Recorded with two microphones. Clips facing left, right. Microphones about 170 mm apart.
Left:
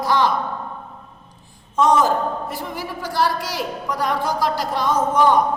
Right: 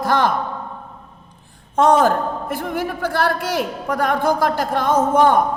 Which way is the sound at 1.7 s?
60° right (ahead or behind).